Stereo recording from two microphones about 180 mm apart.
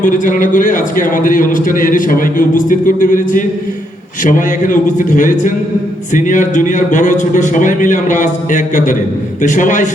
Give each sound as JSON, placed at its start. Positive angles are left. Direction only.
{"t": 0.0, "sound": "a man's voice", "side_deg": 50}